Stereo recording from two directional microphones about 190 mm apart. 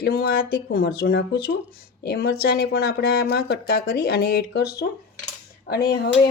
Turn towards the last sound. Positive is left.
turn(degrees=55)  # may be behind; listen again after turning